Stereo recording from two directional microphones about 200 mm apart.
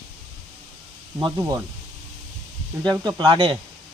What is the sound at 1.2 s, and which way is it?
Speech, 15° right (ahead or behind).